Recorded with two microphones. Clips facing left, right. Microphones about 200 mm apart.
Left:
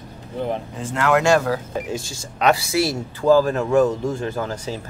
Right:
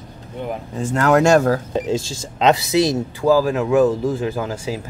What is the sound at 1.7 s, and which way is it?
Speech, 25° right (ahead or behind).